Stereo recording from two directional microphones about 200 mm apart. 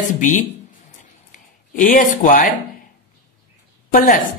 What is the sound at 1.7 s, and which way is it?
Speech, 40° left (ahead or behind).